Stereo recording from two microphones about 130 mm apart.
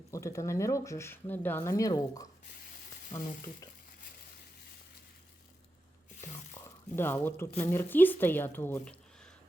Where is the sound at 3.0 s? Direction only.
80° left.